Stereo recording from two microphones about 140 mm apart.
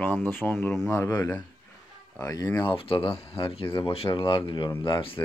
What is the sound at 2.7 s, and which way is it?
Speech, 40° left (ahead or behind).